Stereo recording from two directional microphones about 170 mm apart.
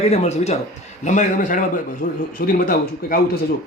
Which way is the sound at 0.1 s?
40° left (ahead or behind).